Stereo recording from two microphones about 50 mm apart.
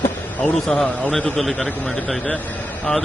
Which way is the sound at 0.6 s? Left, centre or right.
Centre.